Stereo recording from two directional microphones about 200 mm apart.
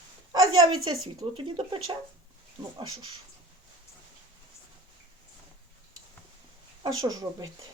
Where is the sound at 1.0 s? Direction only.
25° right (ahead or behind).